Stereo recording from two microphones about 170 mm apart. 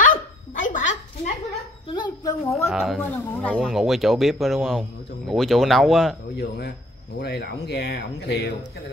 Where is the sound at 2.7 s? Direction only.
5° right (ahead or behind).